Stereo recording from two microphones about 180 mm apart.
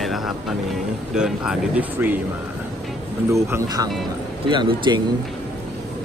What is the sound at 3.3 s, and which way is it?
Speech, 15° right (ahead or behind).